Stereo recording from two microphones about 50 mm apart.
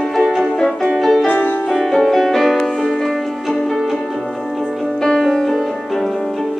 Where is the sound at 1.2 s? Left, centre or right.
Left.